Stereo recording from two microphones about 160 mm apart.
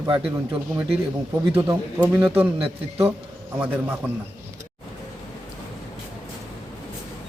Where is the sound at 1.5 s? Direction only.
15° right (ahead or behind).